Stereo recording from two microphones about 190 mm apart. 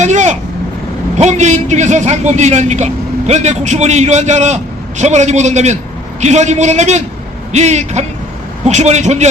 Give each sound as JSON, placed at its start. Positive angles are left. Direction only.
{"t": 0.0, "sound": "vehicle", "side_deg": -40}
{"t": 1.2, "sound": "a man's voice", "side_deg": -40}